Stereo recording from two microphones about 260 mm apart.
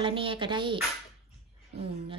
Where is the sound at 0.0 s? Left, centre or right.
Centre.